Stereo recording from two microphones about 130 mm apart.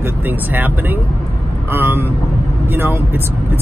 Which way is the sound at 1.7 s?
15° right (ahead or behind).